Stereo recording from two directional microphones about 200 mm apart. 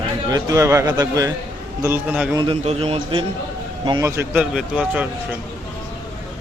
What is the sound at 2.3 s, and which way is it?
Speech, 25° right (ahead or behind).